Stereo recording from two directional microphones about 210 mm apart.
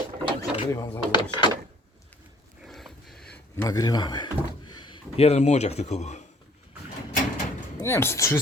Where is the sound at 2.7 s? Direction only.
Centre (ahead or behind).